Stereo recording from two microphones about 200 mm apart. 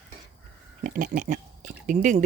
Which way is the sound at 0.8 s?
45° right (ahead or behind).